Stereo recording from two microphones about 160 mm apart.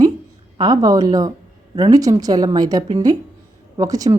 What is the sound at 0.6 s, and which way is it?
A woman's voice, 25° right (ahead or behind).